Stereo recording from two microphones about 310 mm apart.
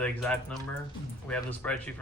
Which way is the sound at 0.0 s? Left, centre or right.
Centre.